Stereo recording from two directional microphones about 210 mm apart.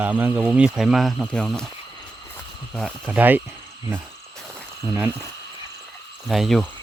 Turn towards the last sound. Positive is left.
turn(degrees=0)  # may be behind; listen again after turning